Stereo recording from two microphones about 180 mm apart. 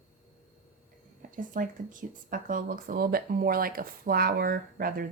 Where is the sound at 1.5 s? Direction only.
50° right (ahead or behind).